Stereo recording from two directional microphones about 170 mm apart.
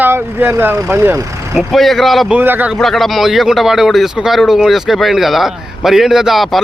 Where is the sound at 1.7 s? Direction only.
Centre (ahead or behind).